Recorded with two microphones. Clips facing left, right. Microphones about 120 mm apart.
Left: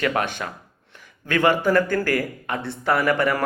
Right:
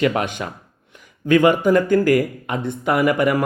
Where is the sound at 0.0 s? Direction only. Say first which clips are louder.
Right 4 dB; 15° right (ahead or behind).